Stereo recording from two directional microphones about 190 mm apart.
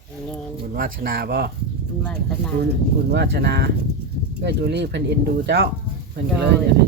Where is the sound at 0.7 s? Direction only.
50° right (ahead or behind).